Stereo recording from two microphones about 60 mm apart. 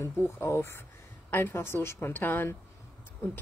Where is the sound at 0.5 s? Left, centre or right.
Left.